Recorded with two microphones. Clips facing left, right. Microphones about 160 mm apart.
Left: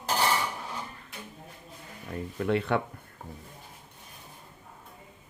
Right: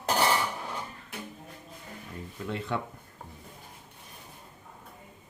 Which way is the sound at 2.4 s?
65° left (ahead or behind).